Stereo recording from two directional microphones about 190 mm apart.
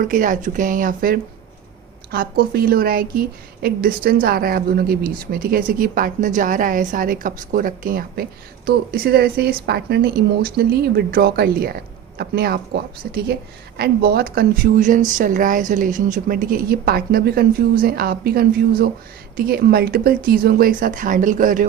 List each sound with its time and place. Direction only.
0.0 s a woman's voice: 45° right (ahead or behind)